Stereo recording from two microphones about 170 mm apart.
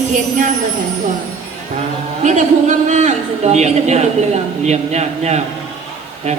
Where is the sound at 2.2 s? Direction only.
45° right (ahead or behind).